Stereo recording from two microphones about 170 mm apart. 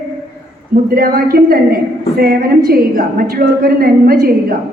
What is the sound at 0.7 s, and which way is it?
A woman's voice, 60° right (ahead or behind).